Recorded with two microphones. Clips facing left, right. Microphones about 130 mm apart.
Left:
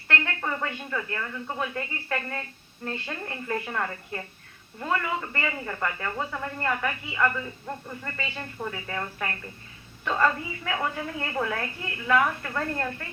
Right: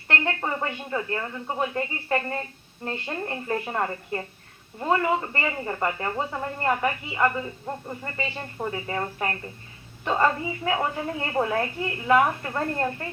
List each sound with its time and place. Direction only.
0.1 s speech: 30° right (ahead or behind)